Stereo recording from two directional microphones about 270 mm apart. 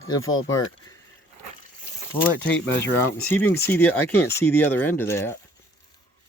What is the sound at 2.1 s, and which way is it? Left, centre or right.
Speech, centre.